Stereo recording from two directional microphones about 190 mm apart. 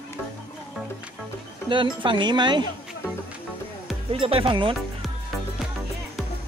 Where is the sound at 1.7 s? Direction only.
25° right (ahead or behind).